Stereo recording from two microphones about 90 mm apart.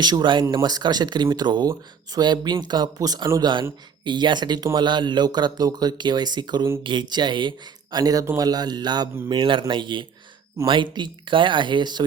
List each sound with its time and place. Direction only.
0.0 s speech: 55° right (ahead or behind)
3.4 s speech: 60° right (ahead or behind)
9.3 s speech: 65° right (ahead or behind)